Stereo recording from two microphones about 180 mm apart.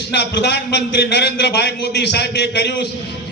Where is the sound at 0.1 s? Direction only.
70° left (ahead or behind).